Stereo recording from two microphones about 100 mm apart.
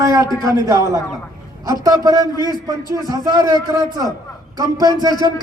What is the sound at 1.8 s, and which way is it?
A man's voice, 40° right (ahead or behind).